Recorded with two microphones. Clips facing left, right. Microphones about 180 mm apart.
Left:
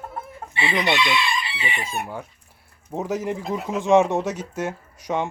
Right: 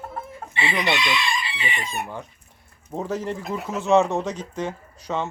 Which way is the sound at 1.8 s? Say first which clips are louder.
Left 1 dB; 10° left (ahead or behind).